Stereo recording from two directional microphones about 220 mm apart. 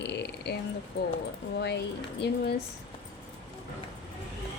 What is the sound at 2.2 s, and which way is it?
Speech, 50° left (ahead or behind).